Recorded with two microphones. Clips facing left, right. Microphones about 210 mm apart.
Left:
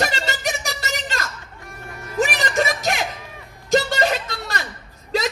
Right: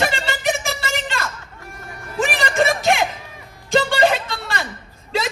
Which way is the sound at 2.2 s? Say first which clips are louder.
Even; 40° left (ahead or behind).